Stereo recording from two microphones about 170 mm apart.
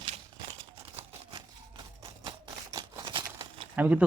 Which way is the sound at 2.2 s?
25° right (ahead or behind).